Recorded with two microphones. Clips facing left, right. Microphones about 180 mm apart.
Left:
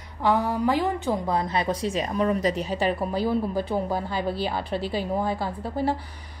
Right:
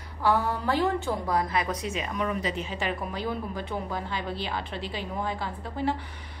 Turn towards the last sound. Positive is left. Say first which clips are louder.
# left 3 dB
turn(degrees=40)  # may be behind; listen again after turning